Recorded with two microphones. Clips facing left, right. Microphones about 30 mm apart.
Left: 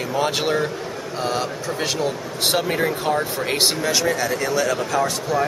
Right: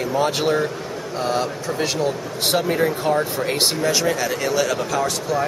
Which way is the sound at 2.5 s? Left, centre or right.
Left.